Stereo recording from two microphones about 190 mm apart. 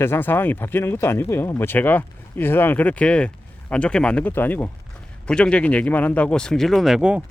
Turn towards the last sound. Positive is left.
turn(degrees=-5)  # may be behind; listen again after turning